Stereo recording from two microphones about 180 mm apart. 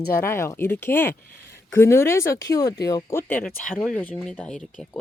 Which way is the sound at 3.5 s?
50° left (ahead or behind).